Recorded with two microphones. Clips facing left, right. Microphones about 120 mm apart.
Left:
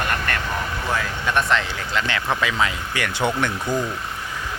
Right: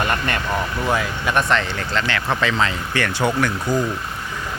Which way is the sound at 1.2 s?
Centre (ahead or behind).